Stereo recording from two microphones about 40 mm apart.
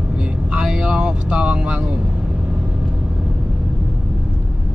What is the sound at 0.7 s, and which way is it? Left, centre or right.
Vehicle, right.